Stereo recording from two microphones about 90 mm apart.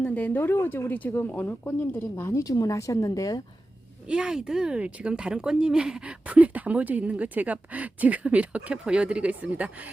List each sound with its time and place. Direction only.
0.0 s speech: 15° left (ahead or behind); by 3.4 s 40° left (ahead or behind)
4.1 s a woman's voice: 10° right (ahead or behind)